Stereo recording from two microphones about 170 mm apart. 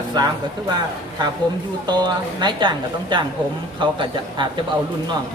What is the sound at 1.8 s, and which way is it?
A woman's voice, 25° right (ahead or behind).